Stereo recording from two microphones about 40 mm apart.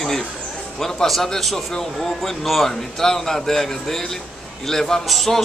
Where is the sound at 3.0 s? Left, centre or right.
Centre.